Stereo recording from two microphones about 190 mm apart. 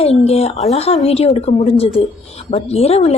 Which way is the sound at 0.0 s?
30° left (ahead or behind).